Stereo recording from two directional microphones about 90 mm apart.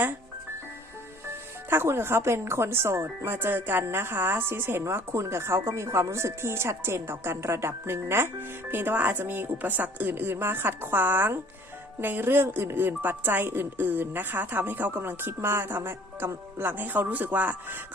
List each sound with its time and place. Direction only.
1.7 s a woman's voice: 25° right (ahead or behind)